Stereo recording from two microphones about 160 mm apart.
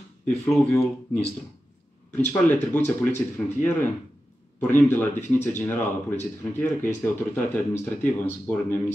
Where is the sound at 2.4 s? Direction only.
10° left (ahead or behind).